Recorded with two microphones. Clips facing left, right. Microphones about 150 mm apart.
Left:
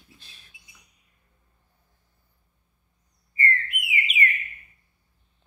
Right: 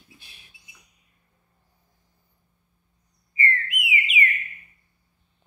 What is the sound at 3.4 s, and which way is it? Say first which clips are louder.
Bird: even; 40° left (ahead or behind).